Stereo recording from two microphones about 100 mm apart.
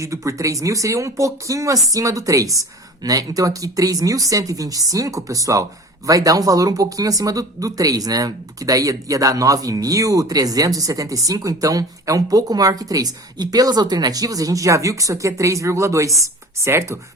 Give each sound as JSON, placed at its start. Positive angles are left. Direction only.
{"t": 0.0, "sound": "speech", "side_deg": -30}